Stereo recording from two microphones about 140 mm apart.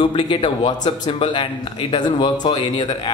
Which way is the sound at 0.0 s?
35° left (ahead or behind).